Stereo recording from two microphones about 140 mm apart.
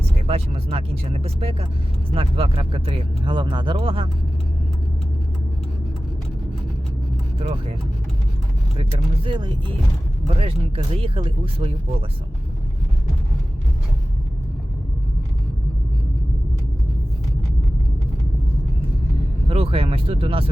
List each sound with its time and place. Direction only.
0.0 s speech: 45° right (ahead or behind)
8.7 s speech: 40° right (ahead or behind)
19.5 s speech: 45° right (ahead or behind)